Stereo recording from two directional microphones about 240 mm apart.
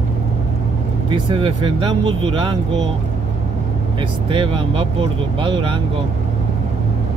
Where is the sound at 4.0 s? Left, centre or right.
Right.